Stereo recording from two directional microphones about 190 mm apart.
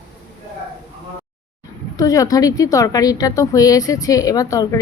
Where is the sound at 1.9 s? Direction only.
15° left (ahead or behind).